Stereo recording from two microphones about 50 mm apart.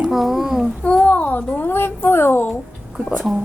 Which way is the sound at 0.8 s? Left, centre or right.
Left.